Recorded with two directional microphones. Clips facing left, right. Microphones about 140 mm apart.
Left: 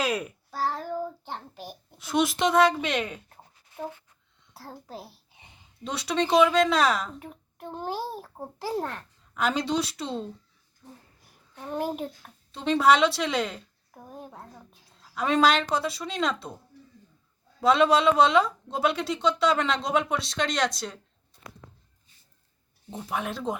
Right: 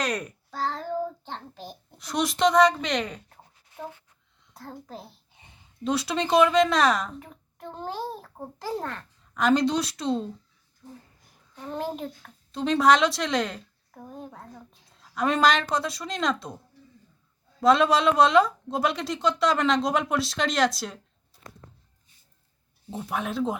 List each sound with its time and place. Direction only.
0.0 s a child's voice: 5° left (ahead or behind)
4.5 s a child's voice: 5° left (ahead or behind)
11.5 s a child's voice: 5° left (ahead or behind)
17.6 s speech: centre (ahead or behind)
22.9 s speech: 5° right (ahead or behind)